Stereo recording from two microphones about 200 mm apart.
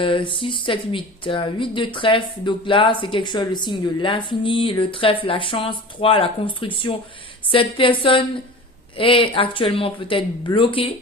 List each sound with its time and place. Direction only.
0.0 s speech: 25° left (ahead or behind)